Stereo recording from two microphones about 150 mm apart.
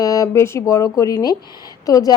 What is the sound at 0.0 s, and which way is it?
Speech, 20° left (ahead or behind).